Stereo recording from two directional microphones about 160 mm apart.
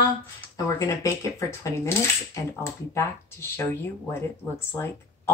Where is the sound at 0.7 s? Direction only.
20° left (ahead or behind).